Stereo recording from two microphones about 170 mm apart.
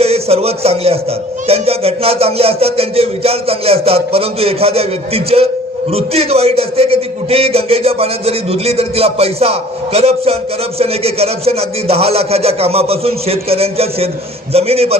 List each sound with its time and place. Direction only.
0.0 s a man's voice: 35° right (ahead or behind)